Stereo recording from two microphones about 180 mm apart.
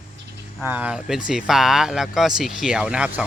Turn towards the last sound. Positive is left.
turn(degrees=-5)  # may be behind; listen again after turning